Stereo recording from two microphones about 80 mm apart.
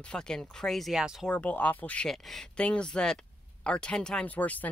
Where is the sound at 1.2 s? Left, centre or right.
Centre.